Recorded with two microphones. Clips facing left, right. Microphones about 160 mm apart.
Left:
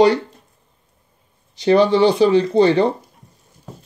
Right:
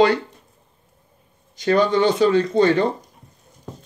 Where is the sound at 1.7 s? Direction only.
30° left (ahead or behind).